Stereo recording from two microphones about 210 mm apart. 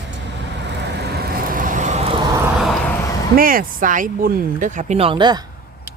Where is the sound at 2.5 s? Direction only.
Centre (ahead or behind).